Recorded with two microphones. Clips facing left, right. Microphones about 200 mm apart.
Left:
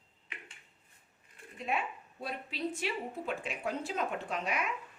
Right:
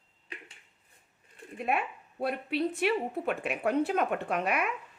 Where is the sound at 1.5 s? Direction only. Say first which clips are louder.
Right 4 dB; 60° right (ahead or behind).